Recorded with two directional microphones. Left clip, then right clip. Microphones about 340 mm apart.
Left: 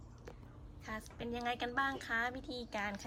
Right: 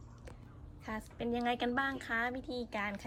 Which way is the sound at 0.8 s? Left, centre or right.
Centre.